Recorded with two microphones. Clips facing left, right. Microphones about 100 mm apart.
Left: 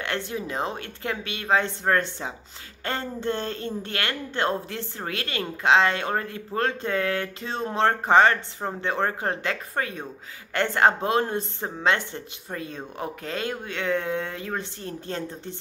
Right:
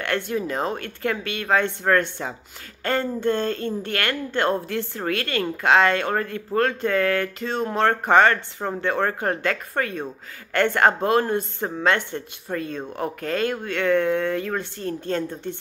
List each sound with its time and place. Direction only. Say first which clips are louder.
0.0 s speech: right 5 dB; 20° left (ahead or behind)